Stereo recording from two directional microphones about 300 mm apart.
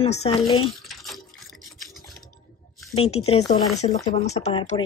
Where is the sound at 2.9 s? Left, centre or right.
Centre.